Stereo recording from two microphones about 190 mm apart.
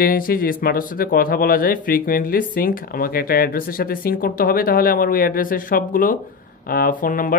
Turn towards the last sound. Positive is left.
turn(degrees=45)  # may be behind; listen again after turning